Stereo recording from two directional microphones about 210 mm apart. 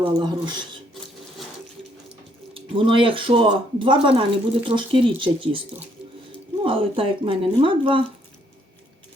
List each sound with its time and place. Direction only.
0.0 s speech: 20° right (ahead or behind)
2.5 s speech: 25° right (ahead or behind)